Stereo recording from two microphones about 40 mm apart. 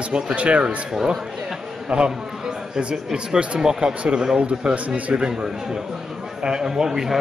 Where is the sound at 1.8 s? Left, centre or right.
Right.